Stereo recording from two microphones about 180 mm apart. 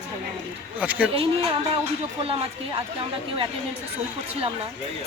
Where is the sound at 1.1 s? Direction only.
30° right (ahead or behind).